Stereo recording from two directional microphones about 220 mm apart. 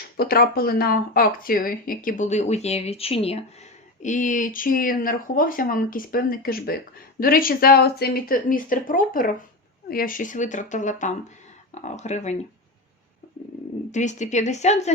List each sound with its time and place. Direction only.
0.2 s speech: 45° left (ahead or behind)
13.9 s speech: 35° left (ahead or behind)